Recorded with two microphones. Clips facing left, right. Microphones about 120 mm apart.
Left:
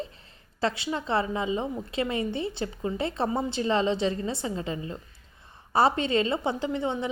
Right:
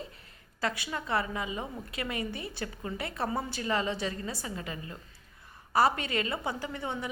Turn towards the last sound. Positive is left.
turn(degrees=20)  # may be behind; listen again after turning